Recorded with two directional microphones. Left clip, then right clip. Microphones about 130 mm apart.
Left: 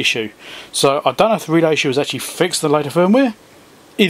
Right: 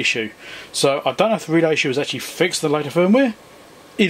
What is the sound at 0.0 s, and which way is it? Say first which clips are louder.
Speech: left 2 dB; 25° left (ahead or behind).